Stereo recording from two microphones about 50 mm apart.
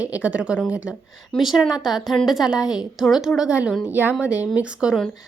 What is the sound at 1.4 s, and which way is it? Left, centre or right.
A woman's voice, centre.